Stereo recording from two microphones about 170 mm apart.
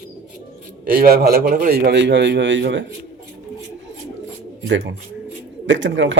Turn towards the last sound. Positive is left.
turn(degrees=-90)